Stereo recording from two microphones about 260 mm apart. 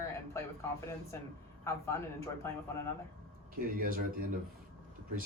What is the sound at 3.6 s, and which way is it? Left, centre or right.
Speech, right.